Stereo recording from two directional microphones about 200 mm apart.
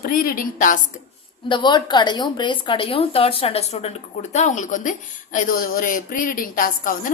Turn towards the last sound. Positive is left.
turn(degrees=40)  # may be behind; listen again after turning